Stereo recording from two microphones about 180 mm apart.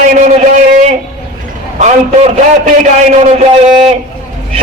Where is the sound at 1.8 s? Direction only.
40° right (ahead or behind).